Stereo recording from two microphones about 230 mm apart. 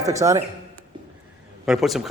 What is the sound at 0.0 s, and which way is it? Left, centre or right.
Speech, centre.